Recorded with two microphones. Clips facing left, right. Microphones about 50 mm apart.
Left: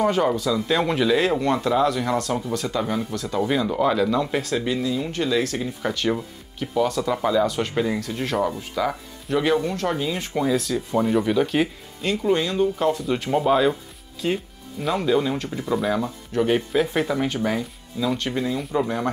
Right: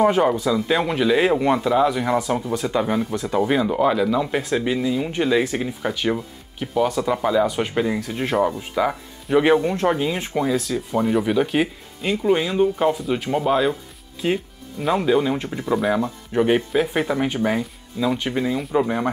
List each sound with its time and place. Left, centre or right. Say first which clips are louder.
0.0 s speech: right 3 dB; centre
10.3 s speech: left 2 dB; centre
13.0 s speech: even; centre
14.2 s speech: right 2 dB; right
16.7 s speech: right 1 dB; centre